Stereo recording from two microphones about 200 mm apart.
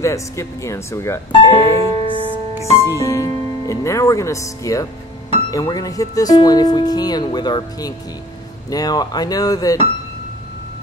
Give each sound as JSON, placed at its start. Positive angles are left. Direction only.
{"t": 0.0, "sound": "speech", "side_deg": 15}
{"t": 1.8, "sound": "music", "side_deg": -25}
{"t": 2.8, "sound": "speech", "side_deg": 15}